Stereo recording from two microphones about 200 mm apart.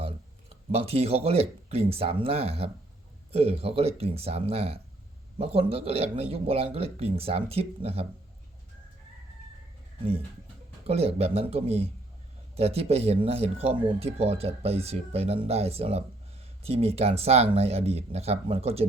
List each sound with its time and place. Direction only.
0.7 s speech: 30° right (ahead or behind)
10.8 s speech: 30° right (ahead or behind)